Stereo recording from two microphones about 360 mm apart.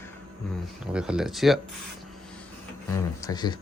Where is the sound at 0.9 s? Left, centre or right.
Centre.